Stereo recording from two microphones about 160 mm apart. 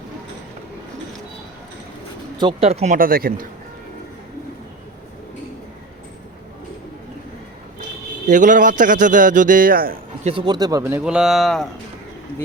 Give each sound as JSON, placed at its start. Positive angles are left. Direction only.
{"t": 2.4, "sound": "speech", "side_deg": -35}
{"t": 8.3, "sound": "a man's voice", "side_deg": -50}
{"t": 10.4, "sound": "speech", "side_deg": -25}
{"t": 11.0, "sound": "speech", "side_deg": -5}